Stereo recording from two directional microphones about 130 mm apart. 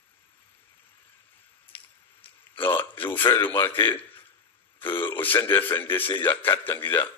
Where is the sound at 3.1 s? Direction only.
20° left (ahead or behind).